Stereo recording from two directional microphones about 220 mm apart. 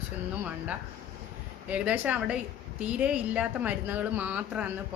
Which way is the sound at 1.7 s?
5° right (ahead or behind).